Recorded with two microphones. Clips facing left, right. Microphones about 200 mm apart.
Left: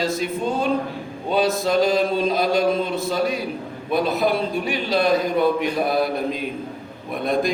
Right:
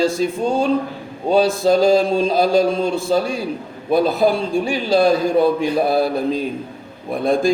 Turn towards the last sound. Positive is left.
turn(degrees=-30)  # may be behind; listen again after turning